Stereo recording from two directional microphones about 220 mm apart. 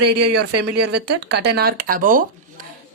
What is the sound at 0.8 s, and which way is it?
A woman's voice, 50° right (ahead or behind).